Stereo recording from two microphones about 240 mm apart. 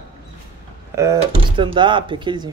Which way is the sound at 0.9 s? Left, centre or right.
Centre.